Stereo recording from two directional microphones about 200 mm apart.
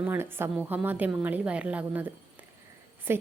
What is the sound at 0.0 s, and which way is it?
A woman's voice, 10° right (ahead or behind).